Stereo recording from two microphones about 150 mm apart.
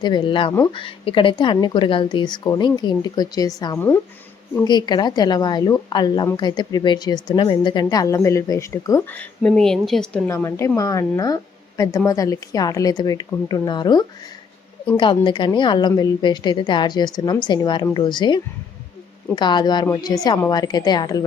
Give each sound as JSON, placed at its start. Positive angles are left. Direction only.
{"t": 0.0, "sound": "a woman's voice", "side_deg": 30}
{"t": 10.2, "sound": "a woman's voice", "side_deg": 20}
{"t": 19.4, "sound": "a woman's voice", "side_deg": 30}